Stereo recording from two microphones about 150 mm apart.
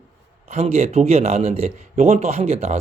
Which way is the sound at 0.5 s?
45° right (ahead or behind).